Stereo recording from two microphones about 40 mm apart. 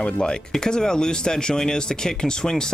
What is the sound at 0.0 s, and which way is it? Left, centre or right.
Speech, left.